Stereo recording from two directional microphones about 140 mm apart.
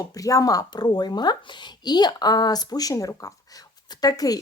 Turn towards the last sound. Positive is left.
turn(degrees=25)  # may be behind; listen again after turning